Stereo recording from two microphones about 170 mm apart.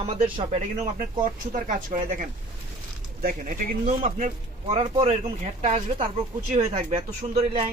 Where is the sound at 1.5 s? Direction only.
50° right (ahead or behind).